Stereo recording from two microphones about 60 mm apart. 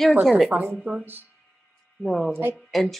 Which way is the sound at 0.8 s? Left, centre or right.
Right.